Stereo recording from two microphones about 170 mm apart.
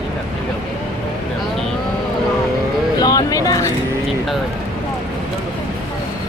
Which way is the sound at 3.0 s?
20° left (ahead or behind).